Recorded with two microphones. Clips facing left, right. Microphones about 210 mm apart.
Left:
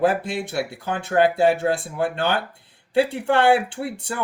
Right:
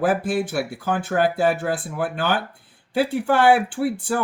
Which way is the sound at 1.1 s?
25° left (ahead or behind).